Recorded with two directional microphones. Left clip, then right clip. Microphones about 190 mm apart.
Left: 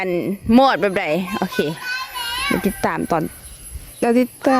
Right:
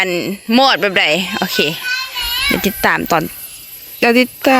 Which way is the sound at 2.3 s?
25° left (ahead or behind).